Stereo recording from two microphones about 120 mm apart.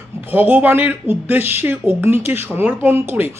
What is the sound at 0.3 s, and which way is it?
Speech, 15° right (ahead or behind).